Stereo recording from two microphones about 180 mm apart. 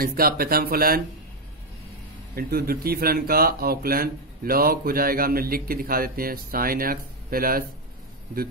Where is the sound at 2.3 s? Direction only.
60° right (ahead or behind).